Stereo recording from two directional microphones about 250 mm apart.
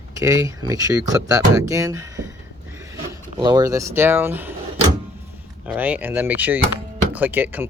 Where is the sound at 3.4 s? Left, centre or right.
Centre.